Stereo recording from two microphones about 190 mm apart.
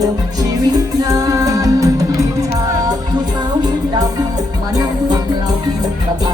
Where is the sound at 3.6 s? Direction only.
20° right (ahead or behind).